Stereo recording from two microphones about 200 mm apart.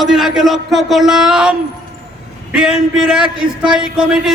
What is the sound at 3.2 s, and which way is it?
Speech, 25° right (ahead or behind).